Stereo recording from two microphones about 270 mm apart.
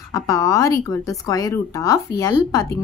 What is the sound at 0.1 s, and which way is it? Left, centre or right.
A woman's voice, centre.